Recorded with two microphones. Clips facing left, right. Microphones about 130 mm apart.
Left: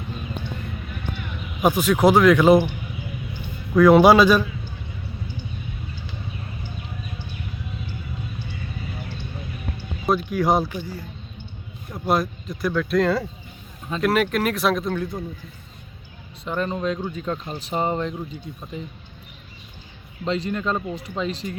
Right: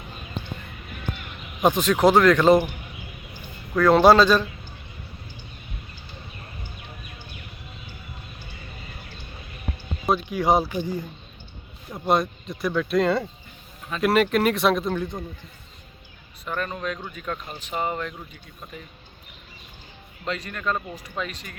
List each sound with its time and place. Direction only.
1.6 s speech: 10° left (ahead or behind)
3.8 s speech: 10° left (ahead or behind)
10.1 s speech: centre (ahead or behind)
10.8 s speech: 20° right (ahead or behind)
11.9 s speech: centre (ahead or behind)
16.4 s speech: 25° left (ahead or behind)
20.2 s speech: 25° left (ahead or behind)